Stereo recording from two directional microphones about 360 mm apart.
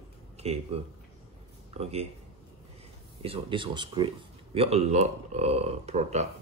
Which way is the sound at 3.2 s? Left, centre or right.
Centre.